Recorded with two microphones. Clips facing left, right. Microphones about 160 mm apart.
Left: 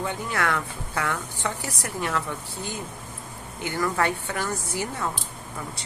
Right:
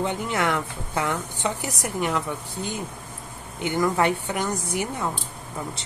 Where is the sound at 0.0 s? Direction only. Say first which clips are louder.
Right 3 dB; 20° right (ahead or behind).